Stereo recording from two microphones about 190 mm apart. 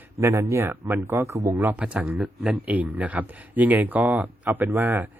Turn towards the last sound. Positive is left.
turn(degrees=-10)  # may be behind; listen again after turning